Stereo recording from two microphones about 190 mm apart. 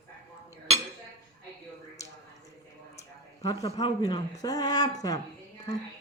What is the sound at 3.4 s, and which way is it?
Speech, 20° left (ahead or behind).